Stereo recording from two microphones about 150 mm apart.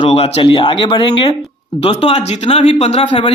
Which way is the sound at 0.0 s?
40° left (ahead or behind).